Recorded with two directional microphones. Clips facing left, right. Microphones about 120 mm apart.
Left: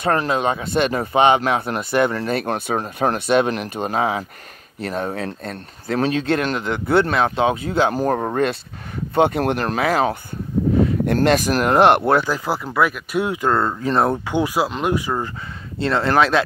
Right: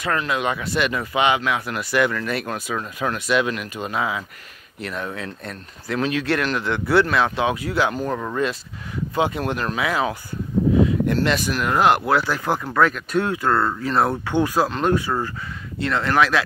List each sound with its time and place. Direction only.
0.0 s speech: 35° left (ahead or behind)
7.9 s speech: 45° left (ahead or behind)
9.1 s speech: 55° left (ahead or behind)
12.1 s speech: 20° left (ahead or behind)
12.4 s speech: 10° left (ahead or behind); by 14.1 s 25° left (ahead or behind)
14.2 s speech: 15° left (ahead or behind)
15.8 s speech: 30° left (ahead or behind)